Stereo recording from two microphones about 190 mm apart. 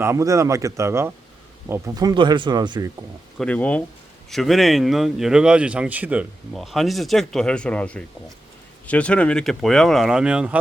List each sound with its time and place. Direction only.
0.0 s speech: 15° right (ahead or behind)
3.3 s speech: 5° left (ahead or behind)